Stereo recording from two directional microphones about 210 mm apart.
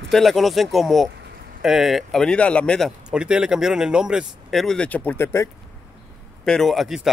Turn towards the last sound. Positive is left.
turn(degrees=0)  # may be behind; listen again after turning